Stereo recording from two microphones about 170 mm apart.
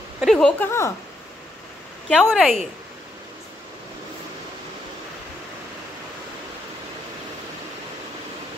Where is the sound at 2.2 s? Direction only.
Centre (ahead or behind).